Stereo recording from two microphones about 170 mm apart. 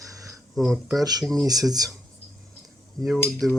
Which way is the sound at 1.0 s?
20° right (ahead or behind).